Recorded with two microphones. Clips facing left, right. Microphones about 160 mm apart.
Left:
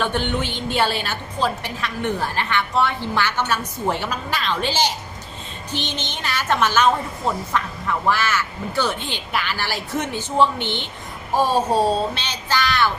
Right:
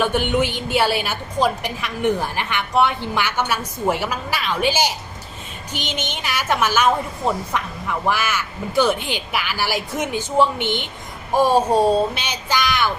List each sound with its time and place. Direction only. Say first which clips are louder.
0.0 s a woman's voice: right 4 dB; 10° right (ahead or behind)